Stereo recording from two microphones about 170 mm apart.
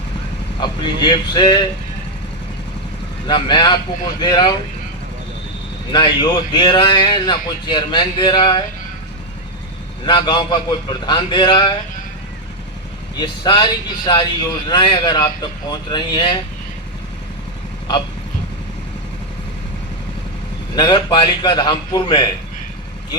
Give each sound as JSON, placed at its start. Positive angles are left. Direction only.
{"t": 0.6, "sound": "speech", "side_deg": 25}
{"t": 3.2, "sound": "speech", "side_deg": 25}
{"t": 5.9, "sound": "speech", "side_deg": 25}
{"t": 10.1, "sound": "speech", "side_deg": 25}
{"t": 13.1, "sound": "speech", "side_deg": 25}
{"t": 20.7, "sound": "speech", "side_deg": 25}